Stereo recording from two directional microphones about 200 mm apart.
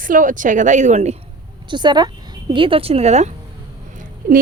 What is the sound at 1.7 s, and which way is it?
Speech, 20° right (ahead or behind).